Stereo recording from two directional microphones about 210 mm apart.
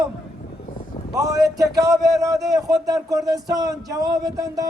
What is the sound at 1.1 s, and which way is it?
A man's voice, 15° right (ahead or behind).